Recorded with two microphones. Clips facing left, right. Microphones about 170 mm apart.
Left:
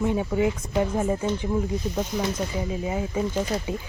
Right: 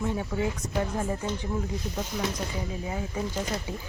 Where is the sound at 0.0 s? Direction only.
15° left (ahead or behind).